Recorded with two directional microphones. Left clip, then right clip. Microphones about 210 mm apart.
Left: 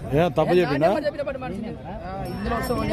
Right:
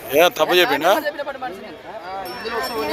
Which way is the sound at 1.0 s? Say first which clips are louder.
Right 1 dB; 20° left (ahead or behind).